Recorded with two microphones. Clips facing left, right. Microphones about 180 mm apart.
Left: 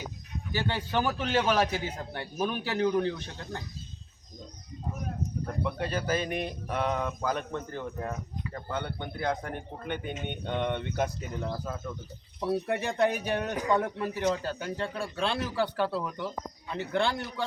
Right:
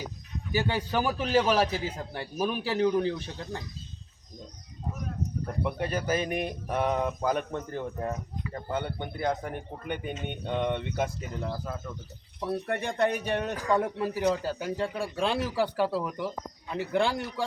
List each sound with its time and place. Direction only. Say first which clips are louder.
0.7 s speech: left 2 dB; 10° right (ahead or behind)
1.6 s a man's voice: right 1 dB; 30° right (ahead or behind)
2.0 s speech: right 1 dB; 5° right (ahead or behind)
5.6 s speech: right 2 dB; 15° right (ahead or behind)
8.7 s speech: right 2 dB; 15° right (ahead or behind)
12.4 s speech: left 1 dB; 10° left (ahead or behind); by 17.4 s 10° right (ahead or behind)